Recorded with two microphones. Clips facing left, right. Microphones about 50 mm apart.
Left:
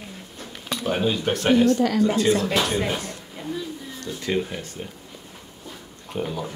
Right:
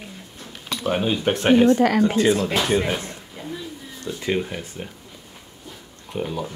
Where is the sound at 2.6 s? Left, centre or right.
Centre.